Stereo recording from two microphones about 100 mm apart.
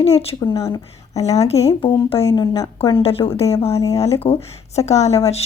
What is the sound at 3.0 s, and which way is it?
Speech, 75° left (ahead or behind).